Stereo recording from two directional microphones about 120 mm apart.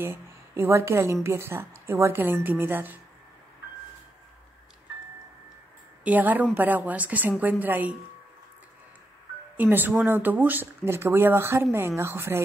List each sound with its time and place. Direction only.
0.0 s a woman's voice: 20° right (ahead or behind)
6.0 s speech: 15° right (ahead or behind)
9.6 s a woman's voice: 15° right (ahead or behind)